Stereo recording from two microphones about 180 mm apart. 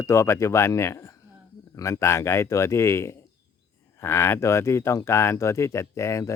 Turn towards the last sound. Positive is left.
turn(degrees=15)  # may be behind; listen again after turning